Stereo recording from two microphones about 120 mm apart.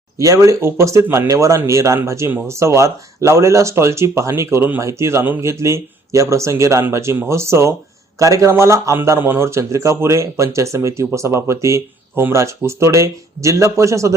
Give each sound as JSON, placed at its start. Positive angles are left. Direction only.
{"t": 0.2, "sound": "speech", "side_deg": -25}